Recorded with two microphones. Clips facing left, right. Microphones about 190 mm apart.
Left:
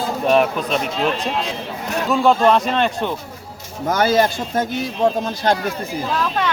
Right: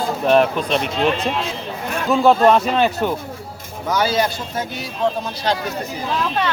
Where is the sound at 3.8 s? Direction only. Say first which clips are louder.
Left 3 dB; 50° left (ahead or behind).